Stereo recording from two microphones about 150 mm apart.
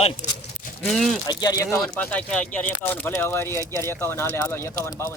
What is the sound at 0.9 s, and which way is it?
Speech, centre (ahead or behind).